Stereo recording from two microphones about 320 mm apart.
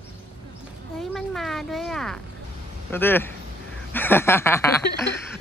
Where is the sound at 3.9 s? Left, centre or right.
Centre.